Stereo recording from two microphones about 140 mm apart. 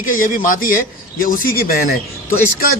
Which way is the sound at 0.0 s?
75° left (ahead or behind).